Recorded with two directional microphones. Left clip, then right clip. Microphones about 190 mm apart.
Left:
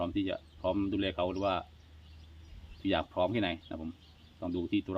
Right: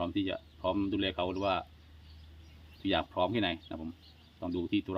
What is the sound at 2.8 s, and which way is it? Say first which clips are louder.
Speech: even; centre (ahead or behind).